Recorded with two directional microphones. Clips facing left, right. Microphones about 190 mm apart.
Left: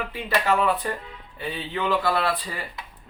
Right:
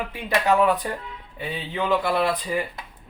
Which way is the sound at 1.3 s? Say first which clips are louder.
Right 1 dB; 15° right (ahead or behind).